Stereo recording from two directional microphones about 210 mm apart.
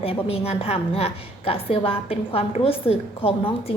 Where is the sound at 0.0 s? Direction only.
25° left (ahead or behind).